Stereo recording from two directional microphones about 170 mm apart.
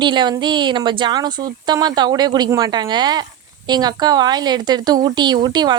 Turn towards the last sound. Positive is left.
turn(degrees=-25)  # may be behind; listen again after turning